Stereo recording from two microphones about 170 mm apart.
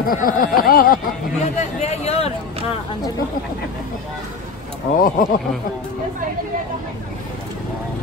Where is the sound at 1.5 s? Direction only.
40° left (ahead or behind).